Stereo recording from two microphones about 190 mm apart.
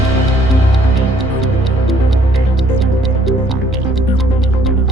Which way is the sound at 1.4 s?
Centre (ahead or behind).